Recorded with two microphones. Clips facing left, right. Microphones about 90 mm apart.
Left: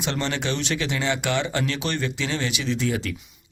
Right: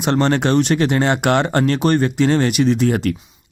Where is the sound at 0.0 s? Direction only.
50° right (ahead or behind).